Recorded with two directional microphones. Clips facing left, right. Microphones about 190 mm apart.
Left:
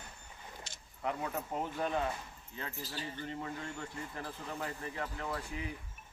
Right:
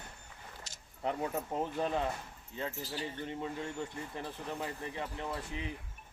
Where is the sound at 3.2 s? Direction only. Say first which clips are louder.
Right 2 dB; 20° right (ahead or behind).